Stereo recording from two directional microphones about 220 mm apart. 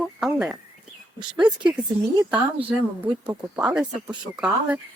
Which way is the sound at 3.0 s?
10° right (ahead or behind).